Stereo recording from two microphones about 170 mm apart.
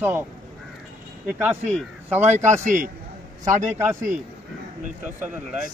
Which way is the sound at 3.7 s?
15° right (ahead or behind).